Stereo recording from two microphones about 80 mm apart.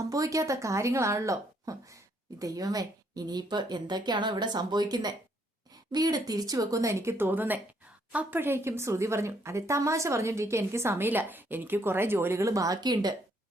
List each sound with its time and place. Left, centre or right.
0.1 s a woman's voice: right